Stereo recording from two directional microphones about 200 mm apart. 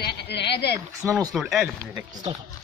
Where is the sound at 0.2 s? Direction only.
55° left (ahead or behind).